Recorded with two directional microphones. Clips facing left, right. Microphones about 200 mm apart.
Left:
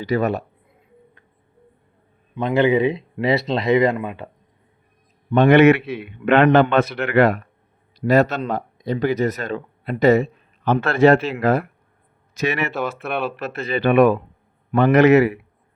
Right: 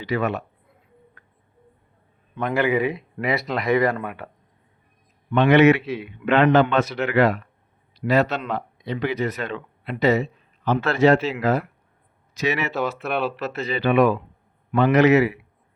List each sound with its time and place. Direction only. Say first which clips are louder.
0.0 s speech: left 4 dB; 40° left (ahead or behind)
2.3 s speech: left 4 dB; 20° left (ahead or behind)
5.3 s a man's voice: left 3 dB; 50° left (ahead or behind)
8.0 s speech: left 4 dB; 45° left (ahead or behind)